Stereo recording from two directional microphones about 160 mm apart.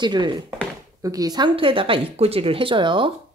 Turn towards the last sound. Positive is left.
turn(degrees=-30)  # may be behind; listen again after turning